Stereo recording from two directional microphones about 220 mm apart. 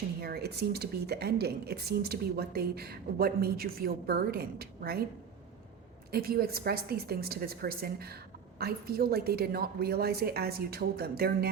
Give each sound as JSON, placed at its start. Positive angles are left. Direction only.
{"t": 0.2, "sound": "a woman's voice", "side_deg": -45}
{"t": 6.1, "sound": "a woman's voice", "side_deg": -45}